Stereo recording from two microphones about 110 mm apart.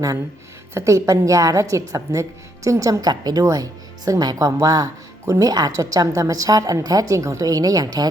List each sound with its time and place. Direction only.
0.7 s speech: 25° right (ahead or behind)